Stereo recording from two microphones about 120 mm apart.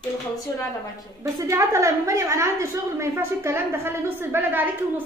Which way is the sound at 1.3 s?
25° right (ahead or behind).